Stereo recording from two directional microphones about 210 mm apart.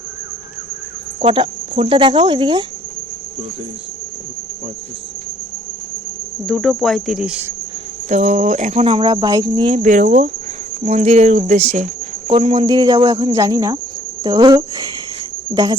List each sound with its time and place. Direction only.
1.2 s speech: 25° right (ahead or behind)
6.4 s cricket: centre (ahead or behind)
8.1 s speech: 35° right (ahead or behind)
9.8 s speech: 35° right (ahead or behind); by 14.8 s 20° right (ahead or behind)